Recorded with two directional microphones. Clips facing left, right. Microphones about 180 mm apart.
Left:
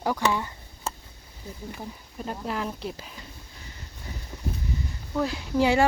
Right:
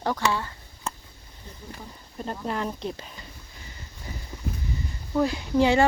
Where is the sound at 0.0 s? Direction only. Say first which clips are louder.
Left 1 dB; 10° left (ahead or behind).